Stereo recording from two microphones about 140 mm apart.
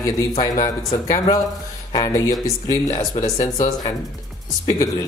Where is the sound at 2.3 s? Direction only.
25° left (ahead or behind).